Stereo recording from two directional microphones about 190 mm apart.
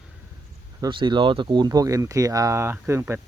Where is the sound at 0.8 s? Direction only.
25° right (ahead or behind).